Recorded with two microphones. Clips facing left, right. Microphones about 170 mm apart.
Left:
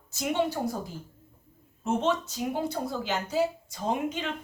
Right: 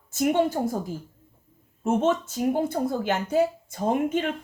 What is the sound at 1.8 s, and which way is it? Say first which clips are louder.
Speech: right 4 dB; 50° right (ahead or behind).